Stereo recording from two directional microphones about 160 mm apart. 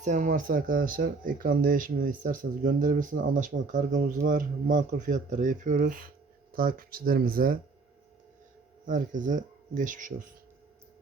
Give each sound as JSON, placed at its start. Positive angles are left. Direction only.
{"t": 0.0, "sound": "speech", "side_deg": -50}
{"t": 8.9, "sound": "speech", "side_deg": -55}